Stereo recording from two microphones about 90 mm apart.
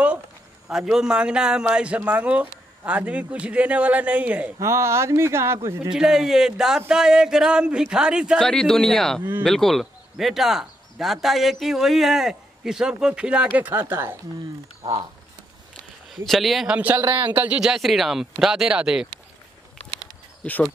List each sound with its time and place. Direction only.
0.7 s a man's voice: 5° right (ahead or behind)
4.6 s speech: 30° right (ahead or behind)
5.9 s a man's voice: 5° right (ahead or behind)
8.4 s a man's voice: 5° left (ahead or behind); by 14.1 s 25° right (ahead or behind)
16.1 s a man's voice: centre (ahead or behind)
16.6 s a man's voice: 15° right (ahead or behind)
20.4 s speech: 15° left (ahead or behind)